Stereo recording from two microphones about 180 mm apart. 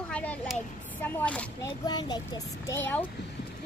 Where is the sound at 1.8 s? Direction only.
20° left (ahead or behind).